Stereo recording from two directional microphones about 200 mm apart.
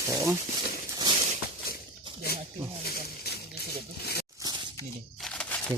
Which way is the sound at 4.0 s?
50° left (ahead or behind).